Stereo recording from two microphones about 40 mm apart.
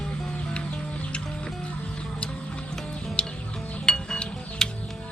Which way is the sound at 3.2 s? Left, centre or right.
Left.